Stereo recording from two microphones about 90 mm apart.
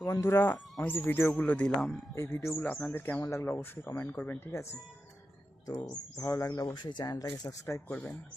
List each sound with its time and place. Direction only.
0.0 s speech: 35° left (ahead or behind)
1.4 s speech: 10° left (ahead or behind)
2.1 s speech: 30° left (ahead or behind)
5.7 s speech: 45° left (ahead or behind)
6.7 s speech: 55° left (ahead or behind)
7.4 s speech: 35° left (ahead or behind)